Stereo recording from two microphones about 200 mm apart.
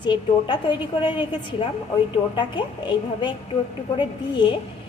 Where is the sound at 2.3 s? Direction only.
25° left (ahead or behind).